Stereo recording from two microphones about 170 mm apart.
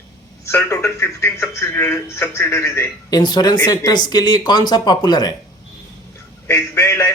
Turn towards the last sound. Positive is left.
turn(degrees=15)  # may be behind; listen again after turning